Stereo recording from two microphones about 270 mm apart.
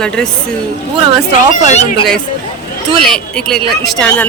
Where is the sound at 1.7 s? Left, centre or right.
Left.